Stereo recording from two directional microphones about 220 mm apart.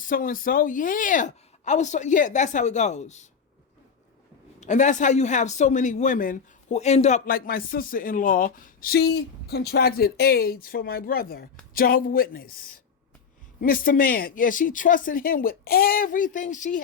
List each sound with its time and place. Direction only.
0.0 s a man's voice: 40° left (ahead or behind)
4.6 s a man's voice: 35° left (ahead or behind)
13.6 s a man's voice: 40° left (ahead or behind)